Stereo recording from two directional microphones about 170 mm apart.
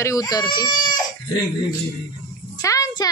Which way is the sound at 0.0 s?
20° left (ahead or behind).